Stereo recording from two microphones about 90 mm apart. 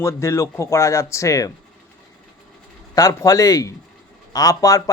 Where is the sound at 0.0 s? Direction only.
30° left (ahead or behind).